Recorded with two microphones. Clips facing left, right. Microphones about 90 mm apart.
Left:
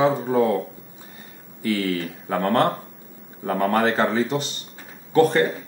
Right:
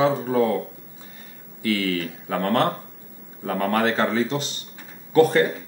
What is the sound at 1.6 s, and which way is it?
Speech, 30° left (ahead or behind).